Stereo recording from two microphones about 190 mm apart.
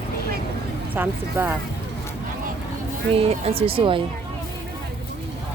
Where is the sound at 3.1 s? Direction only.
30° right (ahead or behind).